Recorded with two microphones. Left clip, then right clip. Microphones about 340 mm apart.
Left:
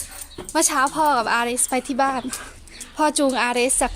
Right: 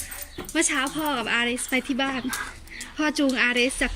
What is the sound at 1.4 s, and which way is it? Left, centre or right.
Speech, left.